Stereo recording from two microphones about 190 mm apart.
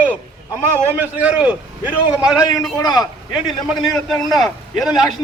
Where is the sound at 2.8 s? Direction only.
20° left (ahead or behind).